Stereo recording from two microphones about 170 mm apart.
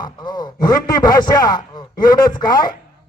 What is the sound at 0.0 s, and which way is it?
Speech, 25° left (ahead or behind).